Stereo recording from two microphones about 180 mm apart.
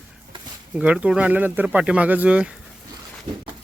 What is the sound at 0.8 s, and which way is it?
Speech, 5° right (ahead or behind).